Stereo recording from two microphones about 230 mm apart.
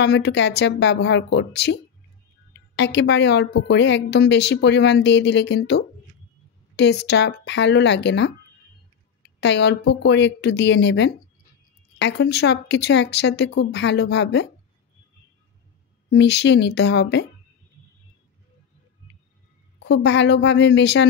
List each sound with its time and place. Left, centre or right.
0.0 s a woman's voice: left
9.4 s a woman's voice: left
16.1 s a woman's voice: left
19.8 s a woman's voice: left